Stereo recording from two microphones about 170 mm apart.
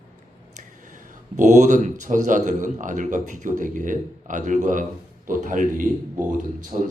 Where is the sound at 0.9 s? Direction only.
45° right (ahead or behind).